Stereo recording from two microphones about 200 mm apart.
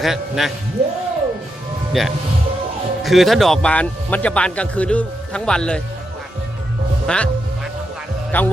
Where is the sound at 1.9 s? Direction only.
Centre (ahead or behind).